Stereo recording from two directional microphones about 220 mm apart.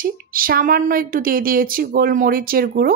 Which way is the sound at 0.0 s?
40° right (ahead or behind).